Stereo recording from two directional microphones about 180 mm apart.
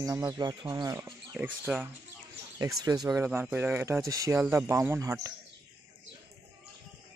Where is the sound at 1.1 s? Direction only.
5° right (ahead or behind).